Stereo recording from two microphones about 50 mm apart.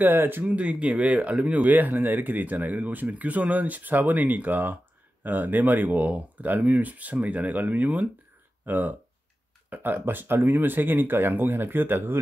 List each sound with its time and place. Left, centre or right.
0.0 s speech: right
0.5 s speech: right